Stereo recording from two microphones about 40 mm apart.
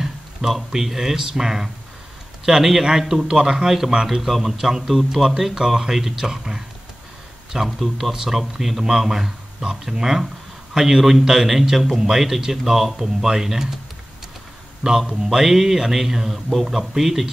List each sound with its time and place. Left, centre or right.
0.0 s a sound: centre
0.8 s speech: centre
4.2 s speech: centre
7.5 s speech: centre
14.8 s a man's voice: centre